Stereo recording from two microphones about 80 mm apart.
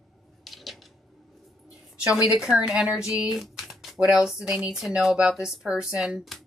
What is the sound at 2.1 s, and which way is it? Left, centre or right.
A woman's voice, centre.